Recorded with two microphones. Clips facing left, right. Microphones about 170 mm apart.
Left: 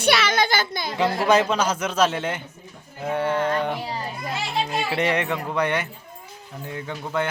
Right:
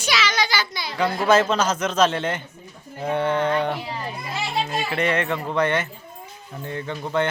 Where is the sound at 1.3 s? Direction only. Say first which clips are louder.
Right 2 dB; 10° left (ahead or behind).